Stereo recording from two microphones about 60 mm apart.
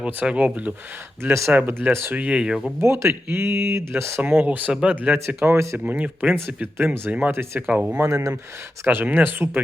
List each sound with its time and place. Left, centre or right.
0.0 s speech: right
1.2 s speech: right
1.5 s speech: right
2.8 s speech: right
4.2 s speech: right; by 4.9 s centre
4.9 s speech: right
5.4 s speech: right
5.8 s speech: right
7.7 s speech: centre
8.0 s speech: right
8.8 s speech: right